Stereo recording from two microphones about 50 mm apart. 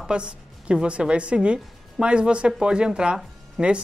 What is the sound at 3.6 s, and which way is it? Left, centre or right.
Speech, centre.